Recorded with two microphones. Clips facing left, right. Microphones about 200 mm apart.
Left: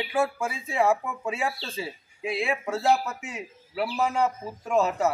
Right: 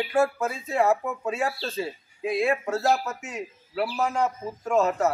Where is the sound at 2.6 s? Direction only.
Centre (ahead or behind).